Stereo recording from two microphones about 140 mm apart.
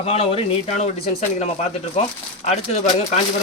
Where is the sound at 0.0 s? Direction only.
45° left (ahead or behind).